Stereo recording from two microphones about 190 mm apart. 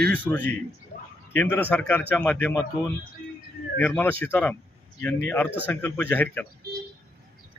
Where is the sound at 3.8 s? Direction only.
10° left (ahead or behind).